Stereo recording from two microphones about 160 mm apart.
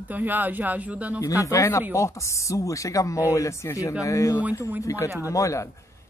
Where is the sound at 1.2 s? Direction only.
20° left (ahead or behind).